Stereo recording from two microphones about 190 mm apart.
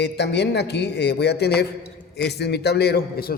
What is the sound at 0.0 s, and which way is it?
A man's voice, 65° left (ahead or behind).